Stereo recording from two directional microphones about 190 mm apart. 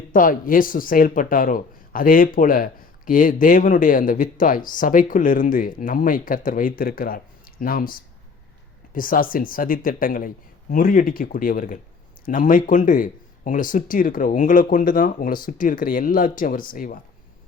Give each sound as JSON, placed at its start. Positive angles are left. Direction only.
{"t": 0.1, "sound": "speech", "side_deg": 45}